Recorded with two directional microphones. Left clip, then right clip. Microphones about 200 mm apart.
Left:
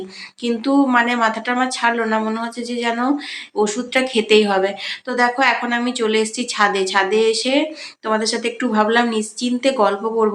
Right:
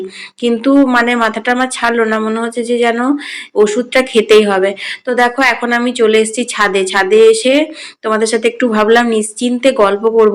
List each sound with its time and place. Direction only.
0.4 s speech: 15° right (ahead or behind)